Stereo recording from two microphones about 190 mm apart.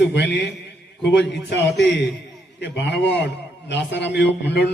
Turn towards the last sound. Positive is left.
turn(degrees=65)  # may be behind; listen again after turning